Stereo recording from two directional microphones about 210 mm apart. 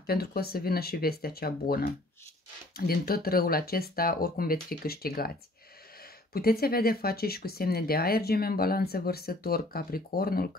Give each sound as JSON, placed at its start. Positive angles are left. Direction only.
{"t": 0.0, "sound": "speech", "side_deg": 45}
{"t": 6.3, "sound": "speech", "side_deg": 45}